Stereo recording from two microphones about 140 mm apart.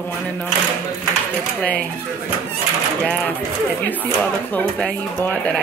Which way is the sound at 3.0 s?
10° left (ahead or behind).